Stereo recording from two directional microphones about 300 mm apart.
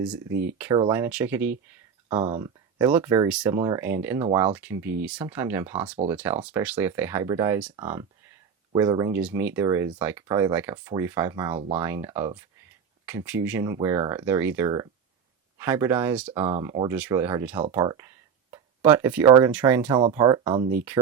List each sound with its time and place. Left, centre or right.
0.0 s speech: centre
2.1 s speech: right
2.4 s speech: centre